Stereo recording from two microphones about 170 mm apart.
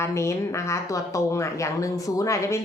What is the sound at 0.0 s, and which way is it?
Speech, 15° left (ahead or behind).